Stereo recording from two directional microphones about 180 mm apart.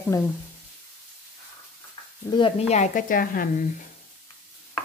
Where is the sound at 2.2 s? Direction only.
30° left (ahead or behind); by 3.5 s 50° left (ahead or behind).